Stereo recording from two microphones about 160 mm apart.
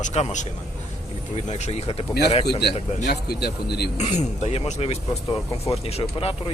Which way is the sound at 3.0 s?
90° left.